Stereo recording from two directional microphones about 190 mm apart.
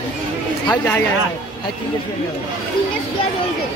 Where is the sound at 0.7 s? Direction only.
10° left (ahead or behind).